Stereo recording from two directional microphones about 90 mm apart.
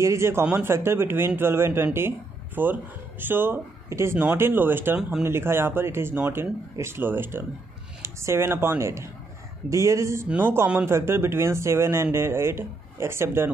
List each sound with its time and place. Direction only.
0.0 s a woman's voice: 30° right (ahead or behind)
10.2 s speech: 15° right (ahead or behind)
10.9 s speech: 30° right (ahead or behind)